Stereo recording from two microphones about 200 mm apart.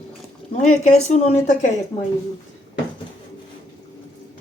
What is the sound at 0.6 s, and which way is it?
Speech, 5° left (ahead or behind).